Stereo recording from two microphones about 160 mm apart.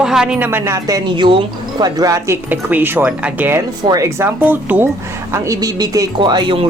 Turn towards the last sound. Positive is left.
turn(degrees=-30)  # may be behind; listen again after turning